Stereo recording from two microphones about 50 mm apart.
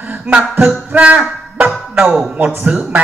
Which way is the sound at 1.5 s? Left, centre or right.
Right.